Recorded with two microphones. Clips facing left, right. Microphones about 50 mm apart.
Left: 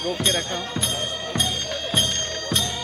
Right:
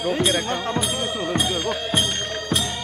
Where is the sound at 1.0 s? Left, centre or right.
Centre.